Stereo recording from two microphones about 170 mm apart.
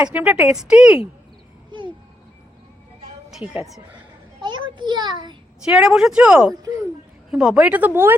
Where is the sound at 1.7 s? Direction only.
30° right (ahead or behind).